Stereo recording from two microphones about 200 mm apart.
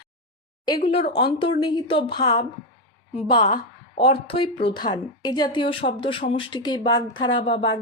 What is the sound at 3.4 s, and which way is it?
Speech, 25° left (ahead or behind).